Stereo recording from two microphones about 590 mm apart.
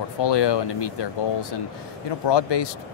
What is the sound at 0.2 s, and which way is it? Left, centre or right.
Speech, left.